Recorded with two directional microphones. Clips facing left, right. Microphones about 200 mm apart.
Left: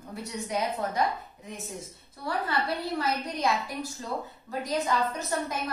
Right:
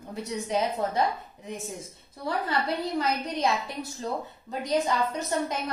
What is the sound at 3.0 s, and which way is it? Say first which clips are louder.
A woman's voice: right 1 dB; 20° right (ahead or behind).